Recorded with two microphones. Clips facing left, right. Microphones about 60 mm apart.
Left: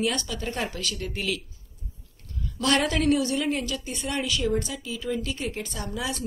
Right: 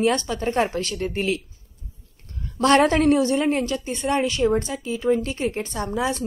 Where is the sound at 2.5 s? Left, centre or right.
Right.